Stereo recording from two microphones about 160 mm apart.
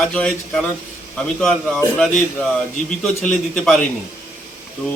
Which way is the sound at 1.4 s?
5° left (ahead or behind).